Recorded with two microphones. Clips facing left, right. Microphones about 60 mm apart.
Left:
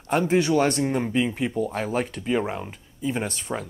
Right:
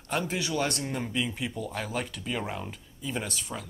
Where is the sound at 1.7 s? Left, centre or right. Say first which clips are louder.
Left 7 dB; left.